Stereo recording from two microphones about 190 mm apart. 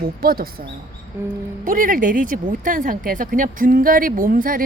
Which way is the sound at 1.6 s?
45° right (ahead or behind).